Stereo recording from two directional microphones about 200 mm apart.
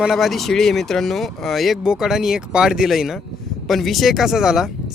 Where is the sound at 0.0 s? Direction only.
Centre (ahead or behind).